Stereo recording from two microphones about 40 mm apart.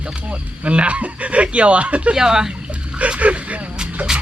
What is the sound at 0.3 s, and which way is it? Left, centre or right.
Speech, right.